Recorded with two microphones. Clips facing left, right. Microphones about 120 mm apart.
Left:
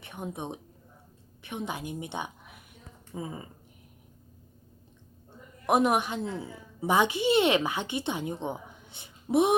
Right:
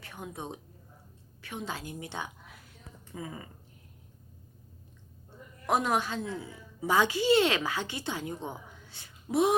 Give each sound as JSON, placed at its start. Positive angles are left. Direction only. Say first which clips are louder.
{"t": 0.0, "sound": "a woman's voice", "louder": "left 4 dB", "side_deg": 20}
{"t": 5.6, "sound": "a woman's voice", "louder": "left 4 dB", "side_deg": 20}